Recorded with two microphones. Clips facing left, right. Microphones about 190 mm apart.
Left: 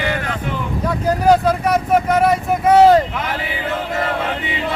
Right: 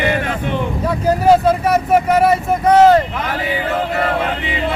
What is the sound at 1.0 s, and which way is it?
Speech, 5° right (ahead or behind).